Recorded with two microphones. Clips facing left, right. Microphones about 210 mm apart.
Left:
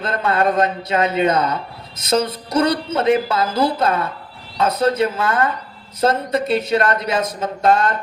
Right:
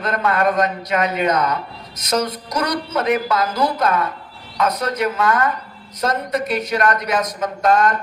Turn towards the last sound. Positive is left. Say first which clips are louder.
# even
turn(degrees=30)  # may be behind; listen again after turning